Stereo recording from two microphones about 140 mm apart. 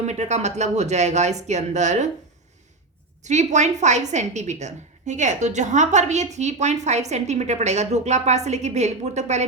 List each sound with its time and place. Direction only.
0.0 s a woman's voice: 55° right (ahead or behind)
3.2 s a woman's voice: 55° right (ahead or behind)